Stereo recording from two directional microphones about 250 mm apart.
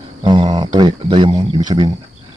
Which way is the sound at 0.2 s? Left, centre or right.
Centre.